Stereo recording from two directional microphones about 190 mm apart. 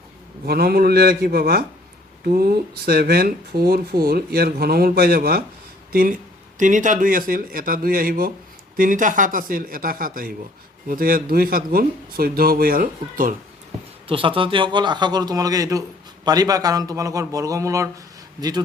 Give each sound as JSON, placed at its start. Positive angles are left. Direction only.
{"t": 0.4, "sound": "a man's voice", "side_deg": -55}
{"t": 14.1, "sound": "a man's voice", "side_deg": -30}